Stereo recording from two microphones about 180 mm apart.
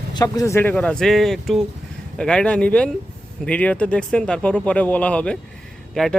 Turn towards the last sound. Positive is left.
turn(degrees=0)  # may be behind; listen again after turning